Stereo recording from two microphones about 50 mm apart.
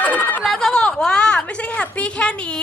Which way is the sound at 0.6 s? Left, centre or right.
Centre.